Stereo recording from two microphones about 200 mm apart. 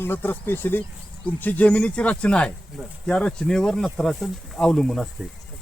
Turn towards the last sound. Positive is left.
turn(degrees=0)  # may be behind; listen again after turning